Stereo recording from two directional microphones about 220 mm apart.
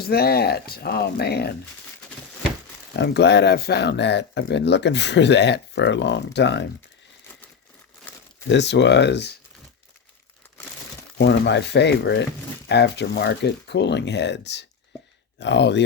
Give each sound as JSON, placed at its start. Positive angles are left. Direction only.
{"t": 0.0, "sound": "speech", "side_deg": 45}
{"t": 2.9, "sound": "speech", "side_deg": 50}
{"t": 8.4, "sound": "speech", "side_deg": 50}
{"t": 11.2, "sound": "speech", "side_deg": 50}